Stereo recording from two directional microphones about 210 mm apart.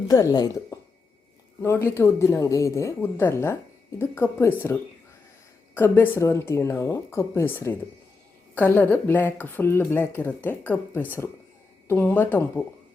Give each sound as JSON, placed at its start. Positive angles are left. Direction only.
{"t": 0.1, "sound": "speech", "side_deg": 15}
{"t": 5.7, "sound": "speech", "side_deg": 10}